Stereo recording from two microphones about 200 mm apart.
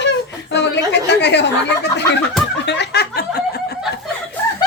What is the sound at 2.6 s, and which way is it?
Snicker, 55° left (ahead or behind).